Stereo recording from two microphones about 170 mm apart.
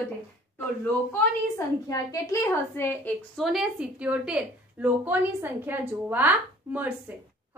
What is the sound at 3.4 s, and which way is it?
A woman's voice, centre (ahead or behind).